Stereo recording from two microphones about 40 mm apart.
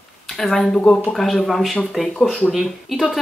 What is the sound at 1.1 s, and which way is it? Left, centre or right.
Speech, centre.